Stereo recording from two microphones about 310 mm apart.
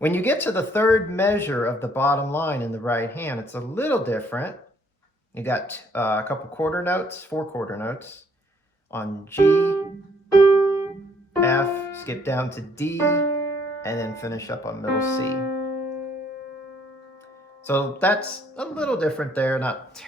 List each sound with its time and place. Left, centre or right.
0.0 s speech: centre
10.3 s music: centre
11.3 s speech: centre
15.4 s piano: left
17.7 s speech: centre